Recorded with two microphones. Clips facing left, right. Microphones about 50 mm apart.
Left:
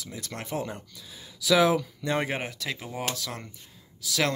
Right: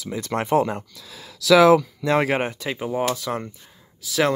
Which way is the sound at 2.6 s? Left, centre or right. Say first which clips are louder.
Right 6 dB; right.